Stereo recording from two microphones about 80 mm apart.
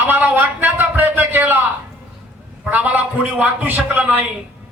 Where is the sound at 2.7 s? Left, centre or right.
Right.